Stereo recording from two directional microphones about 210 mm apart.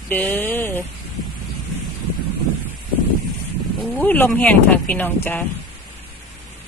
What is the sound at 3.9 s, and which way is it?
Speech, 10° left (ahead or behind).